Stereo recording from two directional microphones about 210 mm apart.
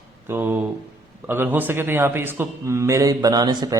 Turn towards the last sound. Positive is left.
turn(degrees=-20)  # may be behind; listen again after turning